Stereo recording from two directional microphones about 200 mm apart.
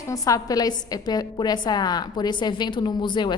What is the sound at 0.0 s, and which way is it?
A woman's voice, 15° left (ahead or behind).